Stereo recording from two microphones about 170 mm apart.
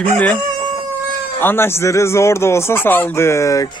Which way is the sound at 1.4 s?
15° left (ahead or behind).